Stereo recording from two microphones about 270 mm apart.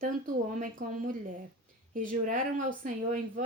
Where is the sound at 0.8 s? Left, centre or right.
Right.